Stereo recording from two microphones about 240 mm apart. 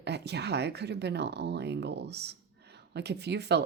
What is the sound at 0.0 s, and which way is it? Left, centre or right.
Speech, right.